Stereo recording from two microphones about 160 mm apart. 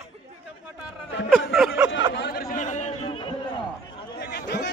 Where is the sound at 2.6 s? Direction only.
50° left (ahead or behind).